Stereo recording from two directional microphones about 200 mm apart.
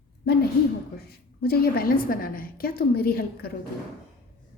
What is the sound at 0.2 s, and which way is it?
A woman's voice, 50° left (ahead or behind).